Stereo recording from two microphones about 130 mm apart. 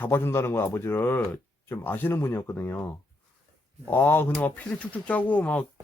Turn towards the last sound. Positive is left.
turn(degrees=10)  # may be behind; listen again after turning